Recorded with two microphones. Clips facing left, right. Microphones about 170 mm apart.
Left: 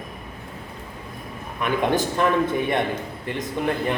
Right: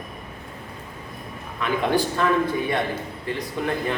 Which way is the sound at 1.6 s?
20° left (ahead or behind).